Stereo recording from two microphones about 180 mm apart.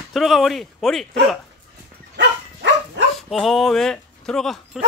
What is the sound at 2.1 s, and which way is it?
Dog, 80° right.